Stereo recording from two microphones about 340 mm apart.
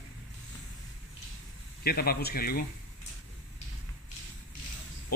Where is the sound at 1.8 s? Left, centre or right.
Left.